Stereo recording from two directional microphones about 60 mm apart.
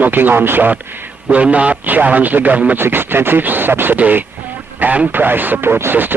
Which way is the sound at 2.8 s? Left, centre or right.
Right.